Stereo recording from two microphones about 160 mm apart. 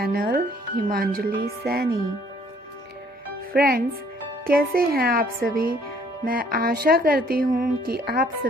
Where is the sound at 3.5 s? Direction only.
70° right (ahead or behind).